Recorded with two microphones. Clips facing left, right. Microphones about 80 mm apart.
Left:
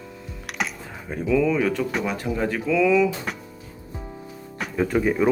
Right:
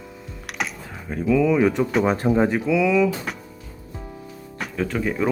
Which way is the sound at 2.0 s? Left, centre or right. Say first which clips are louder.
Right 6 dB; right.